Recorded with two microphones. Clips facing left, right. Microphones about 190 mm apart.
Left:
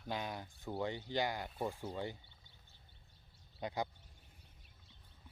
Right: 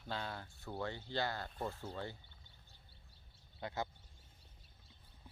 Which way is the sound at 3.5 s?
15° left (ahead or behind).